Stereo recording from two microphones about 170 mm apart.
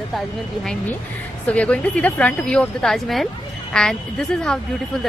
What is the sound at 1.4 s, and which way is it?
A woman's voice, 5° left (ahead or behind).